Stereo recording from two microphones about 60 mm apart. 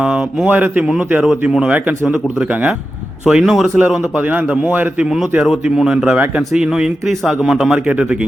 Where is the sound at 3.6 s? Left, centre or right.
Right.